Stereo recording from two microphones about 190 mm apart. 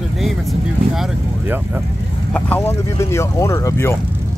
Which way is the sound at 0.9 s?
Centre (ahead or behind).